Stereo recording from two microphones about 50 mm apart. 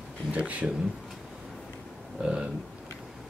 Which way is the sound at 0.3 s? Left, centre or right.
Right.